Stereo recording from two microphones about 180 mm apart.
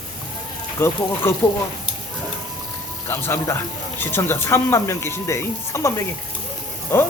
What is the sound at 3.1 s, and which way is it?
A man's voice, 15° left (ahead or behind).